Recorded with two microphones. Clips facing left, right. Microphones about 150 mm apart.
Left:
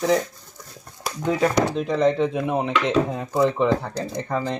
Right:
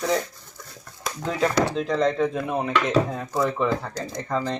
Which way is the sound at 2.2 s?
20° left (ahead or behind).